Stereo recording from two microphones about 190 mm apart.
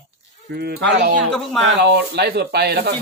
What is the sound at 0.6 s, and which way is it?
Speech, 60° right (ahead or behind).